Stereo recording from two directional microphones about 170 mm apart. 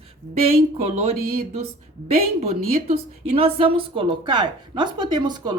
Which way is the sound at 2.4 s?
40° right (ahead or behind).